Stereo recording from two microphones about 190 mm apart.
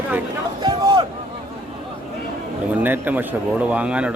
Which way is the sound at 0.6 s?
20° right (ahead or behind).